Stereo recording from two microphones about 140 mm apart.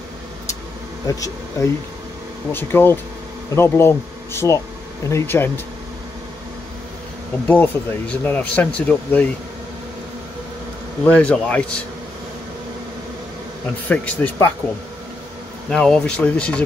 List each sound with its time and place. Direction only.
1.0 s speech: 25° left (ahead or behind)
7.4 s speech: 10° left (ahead or behind)
11.1 s speech: 10° left (ahead or behind)
13.8 s speech: 10° left (ahead or behind)
15.7 s speech: 5° left (ahead or behind)